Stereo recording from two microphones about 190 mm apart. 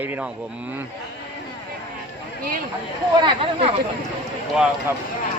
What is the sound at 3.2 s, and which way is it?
Speech, 30° right (ahead or behind).